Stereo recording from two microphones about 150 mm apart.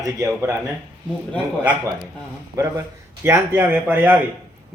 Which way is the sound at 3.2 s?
15° right (ahead or behind).